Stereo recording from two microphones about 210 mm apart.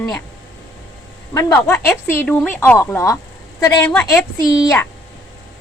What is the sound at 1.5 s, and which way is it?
Speech, 10° left (ahead or behind).